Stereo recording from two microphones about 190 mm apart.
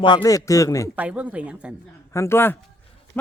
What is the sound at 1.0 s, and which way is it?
Speech, 5° right (ahead or behind).